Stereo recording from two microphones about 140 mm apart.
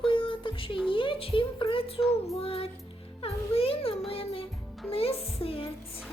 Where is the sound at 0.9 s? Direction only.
40° left (ahead or behind).